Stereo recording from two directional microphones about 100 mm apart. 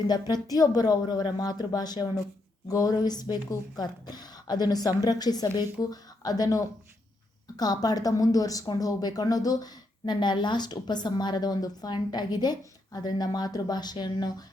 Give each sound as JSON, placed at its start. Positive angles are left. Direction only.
{"t": 0.4, "sound": "a woman's voice", "side_deg": 40}